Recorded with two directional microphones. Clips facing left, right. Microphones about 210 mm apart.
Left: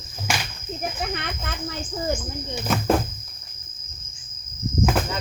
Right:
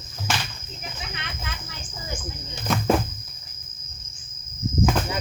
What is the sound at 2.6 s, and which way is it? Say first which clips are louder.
Speech: left 1 dB; 5° left (ahead or behind).